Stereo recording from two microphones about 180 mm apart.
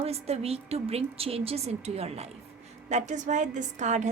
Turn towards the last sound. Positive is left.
turn(degrees=-40)  # may be behind; listen again after turning